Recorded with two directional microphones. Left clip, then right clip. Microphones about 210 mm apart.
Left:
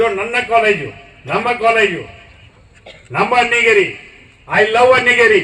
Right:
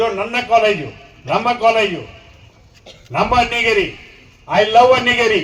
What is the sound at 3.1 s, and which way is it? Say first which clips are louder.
A man's voice: left 2 dB; 40° left (ahead or behind).